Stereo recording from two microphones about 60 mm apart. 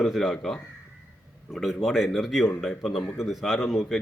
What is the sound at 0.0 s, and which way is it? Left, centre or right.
Speech, centre.